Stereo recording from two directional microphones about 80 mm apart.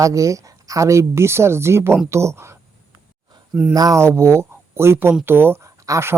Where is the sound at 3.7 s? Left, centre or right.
Right.